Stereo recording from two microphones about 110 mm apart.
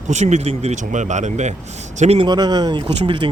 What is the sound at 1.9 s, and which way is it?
Speech, 75° right (ahead or behind).